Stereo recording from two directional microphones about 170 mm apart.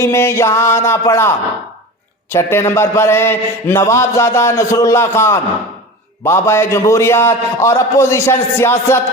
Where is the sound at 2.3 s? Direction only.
15° left (ahead or behind).